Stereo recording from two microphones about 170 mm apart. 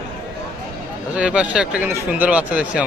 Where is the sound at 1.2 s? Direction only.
5° right (ahead or behind).